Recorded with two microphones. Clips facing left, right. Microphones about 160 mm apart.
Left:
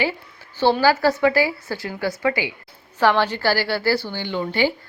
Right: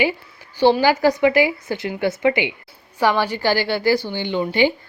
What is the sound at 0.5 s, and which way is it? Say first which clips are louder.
A woman's voice: right 2 dB; 15° right (ahead or behind).